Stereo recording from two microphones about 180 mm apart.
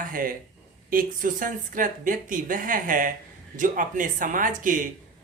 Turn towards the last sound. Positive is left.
turn(degrees=-45)  # may be behind; listen again after turning